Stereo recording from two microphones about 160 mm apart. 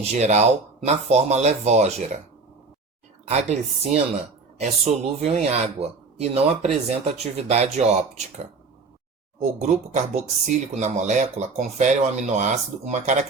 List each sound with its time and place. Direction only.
0.0 s speech: 45° right (ahead or behind)
3.2 s speech: 40° right (ahead or behind)